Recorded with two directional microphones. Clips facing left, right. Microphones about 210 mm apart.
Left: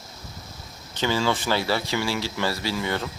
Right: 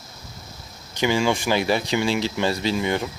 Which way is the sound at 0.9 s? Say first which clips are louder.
Right 3 dB; 15° right (ahead or behind).